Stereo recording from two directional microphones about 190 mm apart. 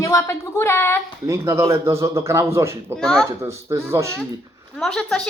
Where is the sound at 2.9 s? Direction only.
Centre (ahead or behind).